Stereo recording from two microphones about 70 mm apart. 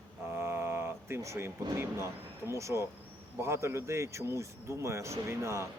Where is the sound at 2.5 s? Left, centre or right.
Right.